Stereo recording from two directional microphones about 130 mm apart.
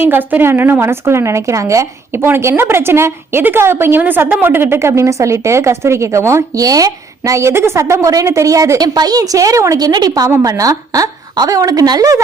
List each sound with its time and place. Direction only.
0.0 s a woman's voice: 15° right (ahead or behind)